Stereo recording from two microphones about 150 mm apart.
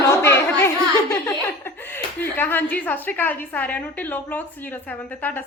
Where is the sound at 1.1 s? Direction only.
15° left (ahead or behind).